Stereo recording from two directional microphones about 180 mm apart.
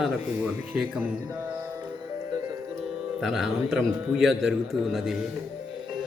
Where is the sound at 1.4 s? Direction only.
10° right (ahead or behind).